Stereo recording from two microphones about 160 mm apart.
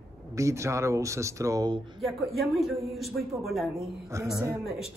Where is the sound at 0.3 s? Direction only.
20° right (ahead or behind).